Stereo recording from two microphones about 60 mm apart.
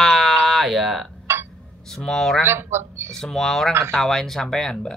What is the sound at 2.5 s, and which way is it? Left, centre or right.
Speech, right.